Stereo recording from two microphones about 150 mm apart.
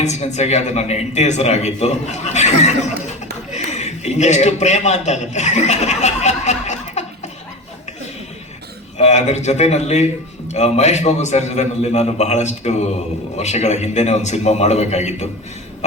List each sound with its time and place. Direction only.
0.0 s a man's voice: 50° left (ahead or behind)
9.0 s a man's voice: 50° left (ahead or behind)